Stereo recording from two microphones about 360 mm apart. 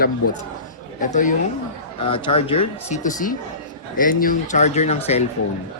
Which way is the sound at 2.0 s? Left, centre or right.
Centre.